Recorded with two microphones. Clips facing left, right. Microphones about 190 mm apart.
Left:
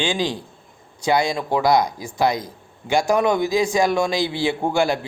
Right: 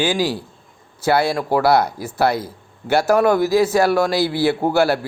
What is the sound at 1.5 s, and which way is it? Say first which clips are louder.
Speech: right 2 dB; 15° left (ahead or behind).